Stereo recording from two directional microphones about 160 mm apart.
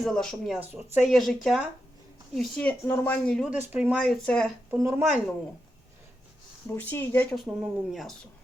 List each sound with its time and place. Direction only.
0.0 s speech: 5° left (ahead or behind)
3.5 s speech: 10° right (ahead or behind)
4.7 s speech: 15° right (ahead or behind)
6.7 s speech: 15° left (ahead or behind)
7.3 s speech: centre (ahead or behind)